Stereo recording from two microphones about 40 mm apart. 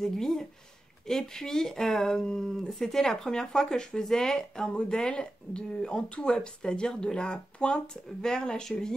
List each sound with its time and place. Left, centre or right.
0.0 s speech: centre
2.7 s speech: centre; by 7.9 s left
8.2 s speech: centre